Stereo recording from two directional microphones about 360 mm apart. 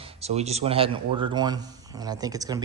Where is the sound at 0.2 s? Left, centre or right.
Centre.